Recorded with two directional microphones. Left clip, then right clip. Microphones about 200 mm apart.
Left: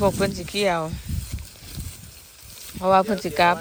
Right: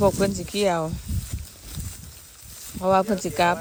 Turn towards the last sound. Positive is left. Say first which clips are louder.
# left 2 dB
turn(degrees=-15)  # may be behind; listen again after turning